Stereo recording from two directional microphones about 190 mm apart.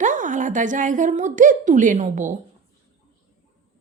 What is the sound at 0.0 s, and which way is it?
A woman's voice, 40° right (ahead or behind).